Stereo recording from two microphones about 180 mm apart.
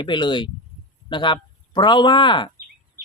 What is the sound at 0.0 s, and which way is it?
Speech, 25° left (ahead or behind).